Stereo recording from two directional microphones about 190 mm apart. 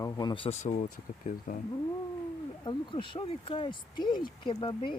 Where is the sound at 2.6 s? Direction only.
25° left (ahead or behind).